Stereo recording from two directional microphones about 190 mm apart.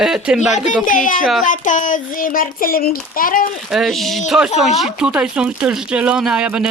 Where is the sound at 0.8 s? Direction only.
45° left (ahead or behind).